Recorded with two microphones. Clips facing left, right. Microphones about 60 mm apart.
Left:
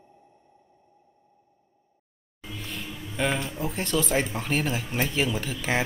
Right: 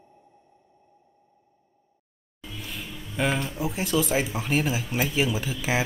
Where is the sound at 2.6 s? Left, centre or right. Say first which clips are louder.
Left 1 dB; centre.